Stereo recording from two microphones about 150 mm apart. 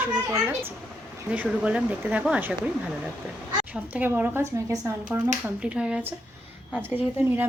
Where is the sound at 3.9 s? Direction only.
10° right (ahead or behind).